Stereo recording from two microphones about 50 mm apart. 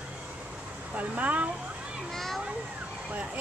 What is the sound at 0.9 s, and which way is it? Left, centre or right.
Speech, right.